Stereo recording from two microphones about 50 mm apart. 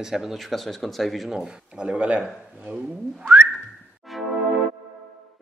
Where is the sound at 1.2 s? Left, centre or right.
Centre.